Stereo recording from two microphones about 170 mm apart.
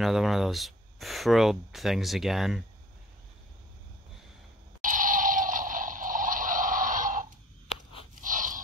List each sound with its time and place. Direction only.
0.0 s speech: centre (ahead or behind)
4.8 s a sound: 50° right (ahead or behind)
8.2 s snort: 50° right (ahead or behind)